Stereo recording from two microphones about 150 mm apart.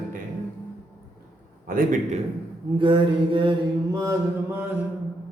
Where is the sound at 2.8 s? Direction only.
35° right (ahead or behind).